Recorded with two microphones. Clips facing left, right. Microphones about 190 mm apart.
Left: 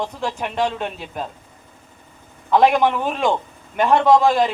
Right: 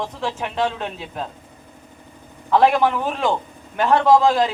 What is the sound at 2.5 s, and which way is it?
Speech, 15° left (ahead or behind).